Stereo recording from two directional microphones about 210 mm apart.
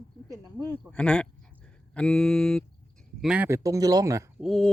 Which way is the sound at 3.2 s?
5° right (ahead or behind).